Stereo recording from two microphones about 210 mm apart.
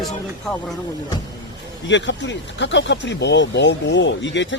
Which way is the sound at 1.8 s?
60° left (ahead or behind).